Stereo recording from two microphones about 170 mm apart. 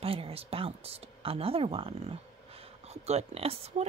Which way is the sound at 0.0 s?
35° right (ahead or behind).